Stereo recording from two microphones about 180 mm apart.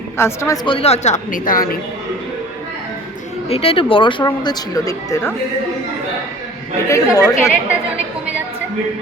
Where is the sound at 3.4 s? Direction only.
35° left (ahead or behind); by 5.3 s 15° left (ahead or behind).